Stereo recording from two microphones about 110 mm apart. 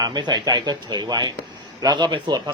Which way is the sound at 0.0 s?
40° right (ahead or behind).